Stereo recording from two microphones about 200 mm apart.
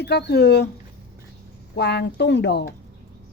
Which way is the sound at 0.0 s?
55° left (ahead or behind).